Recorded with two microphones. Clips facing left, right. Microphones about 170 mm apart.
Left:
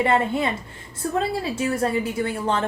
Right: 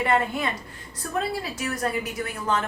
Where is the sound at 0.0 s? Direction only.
25° left (ahead or behind).